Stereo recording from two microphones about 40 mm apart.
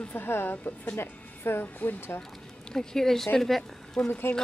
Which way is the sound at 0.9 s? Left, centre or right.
Left.